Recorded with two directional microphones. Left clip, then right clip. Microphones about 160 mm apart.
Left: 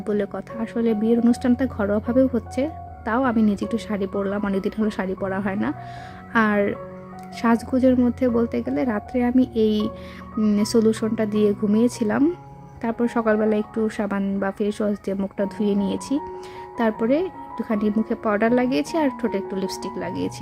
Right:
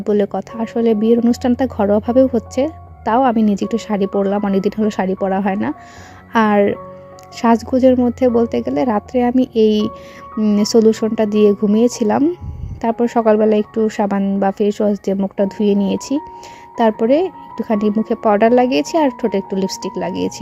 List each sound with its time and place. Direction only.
0.0 s a woman's voice: 30° right (ahead or behind)
10.3 s a woman's voice: 20° right (ahead or behind)